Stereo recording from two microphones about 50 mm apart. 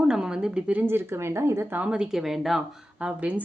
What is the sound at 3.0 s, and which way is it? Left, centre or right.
Speech, right.